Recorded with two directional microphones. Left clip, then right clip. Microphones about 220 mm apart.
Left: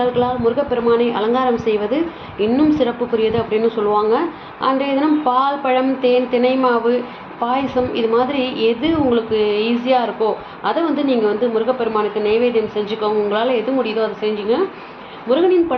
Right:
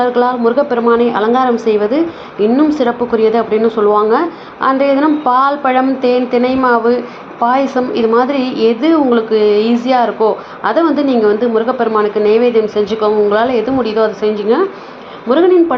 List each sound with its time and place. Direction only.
0.0 s a woman's voice: 25° right (ahead or behind)